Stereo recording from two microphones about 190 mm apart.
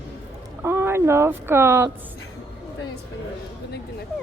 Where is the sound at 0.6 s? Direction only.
15° right (ahead or behind).